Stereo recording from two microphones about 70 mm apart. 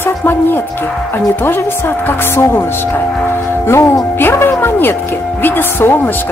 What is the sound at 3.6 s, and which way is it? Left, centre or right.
A woman's voice, left.